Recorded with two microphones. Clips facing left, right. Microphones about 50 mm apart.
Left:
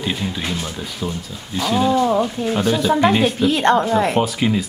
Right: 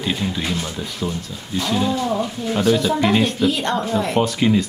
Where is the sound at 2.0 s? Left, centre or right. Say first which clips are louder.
Left 5 dB; left.